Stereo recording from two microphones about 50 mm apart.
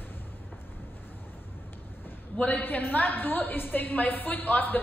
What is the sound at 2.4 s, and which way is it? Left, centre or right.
A woman's voice, left.